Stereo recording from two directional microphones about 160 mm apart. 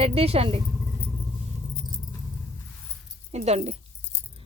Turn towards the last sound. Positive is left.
turn(degrees=-40)  # may be behind; listen again after turning